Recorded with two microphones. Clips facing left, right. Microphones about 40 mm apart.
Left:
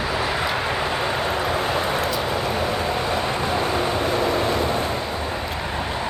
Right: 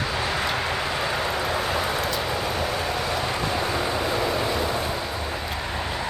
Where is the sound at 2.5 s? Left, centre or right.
Left.